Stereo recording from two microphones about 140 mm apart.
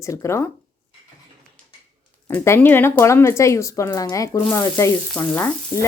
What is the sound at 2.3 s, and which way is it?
Speech, 15° left (ahead or behind).